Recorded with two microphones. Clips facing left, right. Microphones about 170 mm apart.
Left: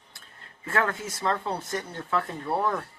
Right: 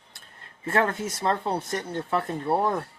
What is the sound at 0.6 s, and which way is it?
Speech, 30° right (ahead or behind).